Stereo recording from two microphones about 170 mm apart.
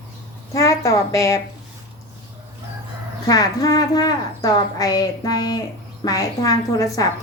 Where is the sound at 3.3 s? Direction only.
20° left (ahead or behind).